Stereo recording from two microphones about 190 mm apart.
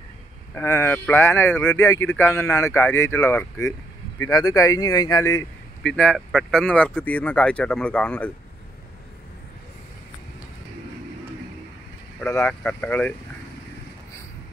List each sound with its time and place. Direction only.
0.6 s speech: 15° left (ahead or behind)
5.8 s speech: 5° left (ahead or behind)
12.2 s speech: 10° left (ahead or behind)